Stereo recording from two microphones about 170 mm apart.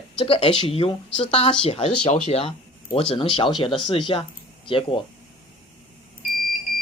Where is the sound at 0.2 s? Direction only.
35° left (ahead or behind).